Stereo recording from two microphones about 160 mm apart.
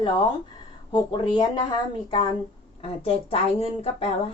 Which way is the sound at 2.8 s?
40° left (ahead or behind).